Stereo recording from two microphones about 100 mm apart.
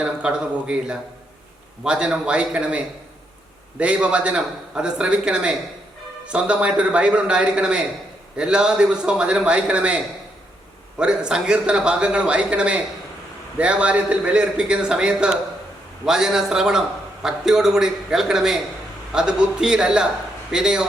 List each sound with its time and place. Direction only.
0.0 s a man's voice: 10° right (ahead or behind)